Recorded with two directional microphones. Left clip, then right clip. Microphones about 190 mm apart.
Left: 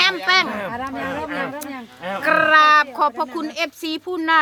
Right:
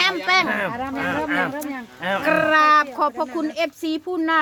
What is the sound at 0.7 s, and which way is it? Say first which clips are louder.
Speech: even; 55° left (ahead or behind).